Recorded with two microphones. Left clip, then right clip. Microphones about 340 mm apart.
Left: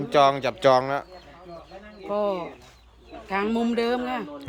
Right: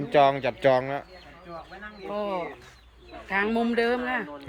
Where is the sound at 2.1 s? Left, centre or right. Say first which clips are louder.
Left 4 dB; left.